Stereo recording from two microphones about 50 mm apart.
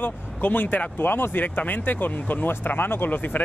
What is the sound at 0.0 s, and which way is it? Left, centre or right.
Speech, left.